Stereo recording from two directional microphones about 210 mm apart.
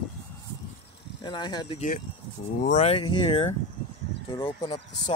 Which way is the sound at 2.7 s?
30° left (ahead or behind).